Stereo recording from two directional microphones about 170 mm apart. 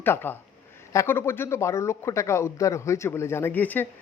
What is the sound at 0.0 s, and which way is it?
Speech, 10° left (ahead or behind).